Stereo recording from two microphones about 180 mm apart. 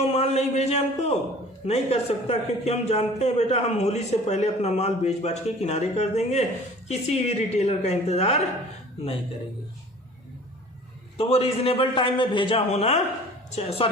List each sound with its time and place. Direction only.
0.0 s speech: 35° left (ahead or behind)
11.2 s speech: 30° left (ahead or behind)